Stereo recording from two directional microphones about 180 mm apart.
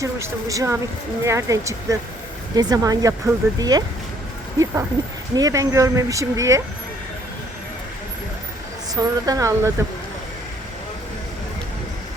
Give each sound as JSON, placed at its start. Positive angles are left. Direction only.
{"t": 0.0, "sound": "speech", "side_deg": -15}
{"t": 9.0, "sound": "speech", "side_deg": -20}